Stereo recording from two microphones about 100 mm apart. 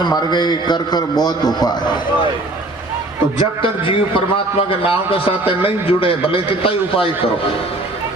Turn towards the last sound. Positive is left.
turn(degrees=70)  # may be behind; listen again after turning